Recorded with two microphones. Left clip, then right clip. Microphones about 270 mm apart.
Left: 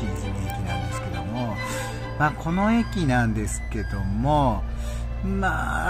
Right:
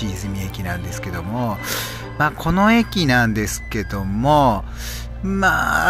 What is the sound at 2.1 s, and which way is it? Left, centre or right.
Speech, centre.